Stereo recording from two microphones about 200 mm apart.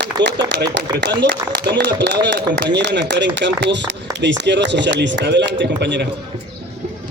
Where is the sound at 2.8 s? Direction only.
60° right (ahead or behind).